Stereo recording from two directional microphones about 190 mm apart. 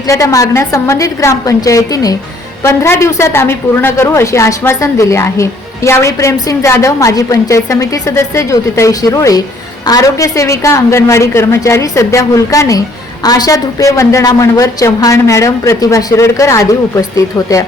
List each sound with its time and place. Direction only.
0.1 s a woman's voice: 15° left (ahead or behind)